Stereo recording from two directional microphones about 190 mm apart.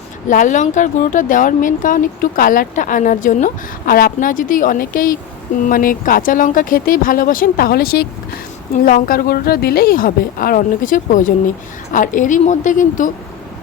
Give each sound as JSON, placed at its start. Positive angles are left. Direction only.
{"t": 0.3, "sound": "speech", "side_deg": 40}